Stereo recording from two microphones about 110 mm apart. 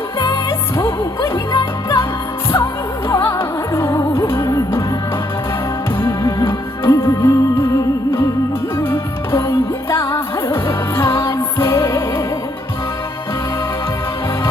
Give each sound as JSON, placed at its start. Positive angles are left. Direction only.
{"t": 1.5, "sound": "music", "side_deg": 50}
{"t": 3.2, "sound": "music", "side_deg": 20}
{"t": 6.0, "sound": "music", "side_deg": 20}
{"t": 8.8, "sound": "music", "side_deg": 20}